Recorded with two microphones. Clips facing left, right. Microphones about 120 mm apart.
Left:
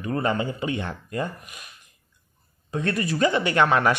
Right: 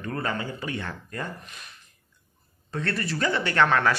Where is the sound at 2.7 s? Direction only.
15° left (ahead or behind).